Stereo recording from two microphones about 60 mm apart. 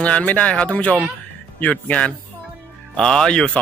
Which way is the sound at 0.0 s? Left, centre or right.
Left.